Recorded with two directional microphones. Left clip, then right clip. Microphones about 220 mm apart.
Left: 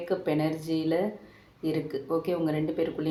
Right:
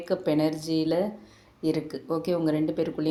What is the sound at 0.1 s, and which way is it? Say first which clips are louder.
A woman's voice: right 3 dB; 45° right (ahead or behind).